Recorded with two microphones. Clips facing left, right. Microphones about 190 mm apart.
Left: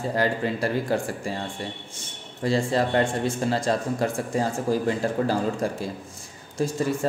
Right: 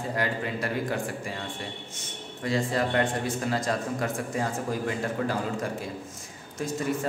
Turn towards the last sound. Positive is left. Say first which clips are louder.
# left 4 dB
turn(degrees=30)  # may be behind; listen again after turning